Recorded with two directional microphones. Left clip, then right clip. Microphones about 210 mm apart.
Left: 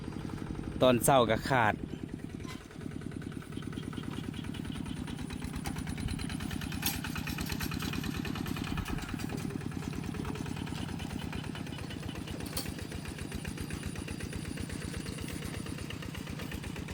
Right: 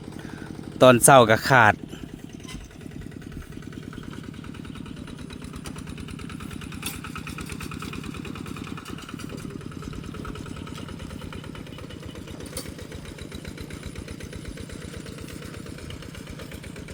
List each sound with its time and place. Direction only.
0.8 s speech: 30° right (ahead or behind)
6.8 s vehicle: centre (ahead or behind)